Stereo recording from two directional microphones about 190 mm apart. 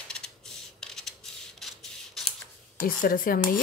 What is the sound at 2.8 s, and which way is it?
Speech, 50° left (ahead or behind).